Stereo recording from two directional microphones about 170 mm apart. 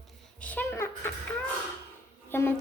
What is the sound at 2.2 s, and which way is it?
Speech, 15° left (ahead or behind).